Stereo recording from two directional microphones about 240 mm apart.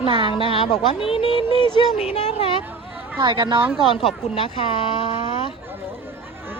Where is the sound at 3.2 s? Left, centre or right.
Centre.